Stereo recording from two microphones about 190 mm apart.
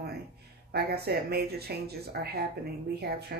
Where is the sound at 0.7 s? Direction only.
55° right (ahead or behind).